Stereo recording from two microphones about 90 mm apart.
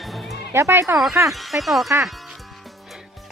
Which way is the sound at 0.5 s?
30° right (ahead or behind).